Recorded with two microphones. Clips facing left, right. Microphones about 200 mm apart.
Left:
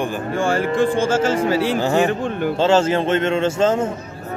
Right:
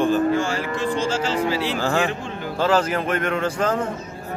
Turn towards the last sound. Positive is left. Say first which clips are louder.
# left 5 dB
turn(degrees=25)  # may be behind; listen again after turning